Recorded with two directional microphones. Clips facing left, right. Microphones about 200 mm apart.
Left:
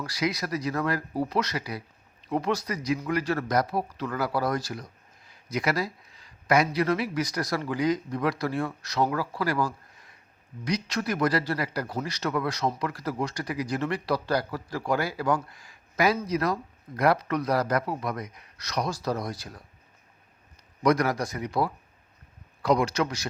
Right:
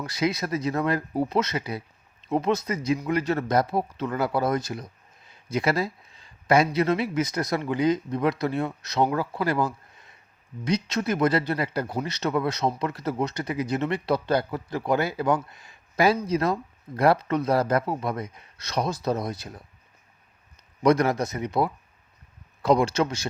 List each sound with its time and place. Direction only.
0.0 s speech: 25° right (ahead or behind)
20.8 s speech: 25° right (ahead or behind)